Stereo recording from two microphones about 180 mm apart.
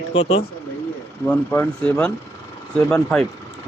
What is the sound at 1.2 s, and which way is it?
Speech, 10° left (ahead or behind).